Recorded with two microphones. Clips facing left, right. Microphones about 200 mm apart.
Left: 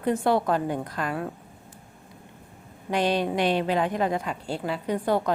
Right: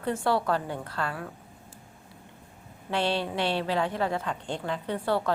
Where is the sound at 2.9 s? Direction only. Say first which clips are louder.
Left 4 dB; 15° left (ahead or behind).